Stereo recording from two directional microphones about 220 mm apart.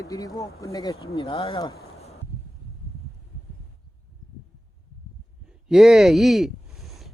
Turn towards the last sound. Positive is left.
turn(degrees=0)  # may be behind; listen again after turning